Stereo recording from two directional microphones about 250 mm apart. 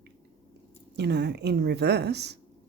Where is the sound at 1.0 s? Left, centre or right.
Right.